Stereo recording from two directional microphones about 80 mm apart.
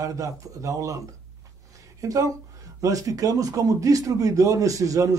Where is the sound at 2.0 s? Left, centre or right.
Right.